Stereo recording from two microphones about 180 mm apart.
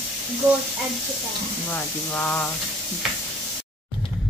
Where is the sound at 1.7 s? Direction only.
10° left (ahead or behind).